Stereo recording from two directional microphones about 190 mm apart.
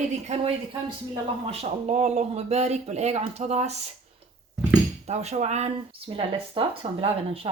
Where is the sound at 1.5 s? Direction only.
35° right (ahead or behind).